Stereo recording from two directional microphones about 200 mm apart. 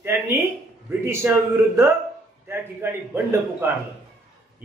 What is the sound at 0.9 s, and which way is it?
A man's voice, 15° right (ahead or behind).